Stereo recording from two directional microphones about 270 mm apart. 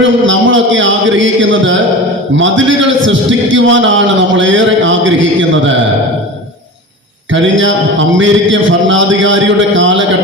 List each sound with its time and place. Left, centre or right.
0.0 s a man's voice: right
7.3 s a man's voice: right